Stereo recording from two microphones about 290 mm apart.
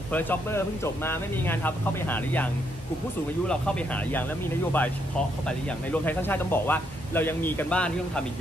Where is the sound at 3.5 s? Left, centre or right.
Centre.